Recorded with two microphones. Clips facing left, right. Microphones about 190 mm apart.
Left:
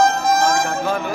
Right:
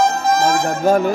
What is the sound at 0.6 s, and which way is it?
Speech, 40° right (ahead or behind).